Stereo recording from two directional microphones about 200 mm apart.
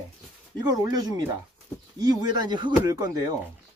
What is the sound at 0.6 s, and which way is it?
Speech, 20° right (ahead or behind).